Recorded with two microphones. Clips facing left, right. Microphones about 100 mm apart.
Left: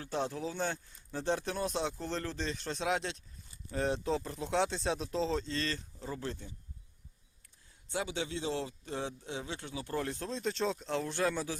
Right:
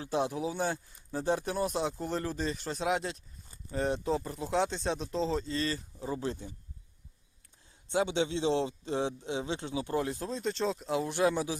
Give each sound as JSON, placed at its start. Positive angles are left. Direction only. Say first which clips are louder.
{"t": 0.0, "sound": "speech", "louder": "right 4 dB", "side_deg": -15}
{"t": 7.9, "sound": "a man's voice", "louder": "right 7 dB", "side_deg": -25}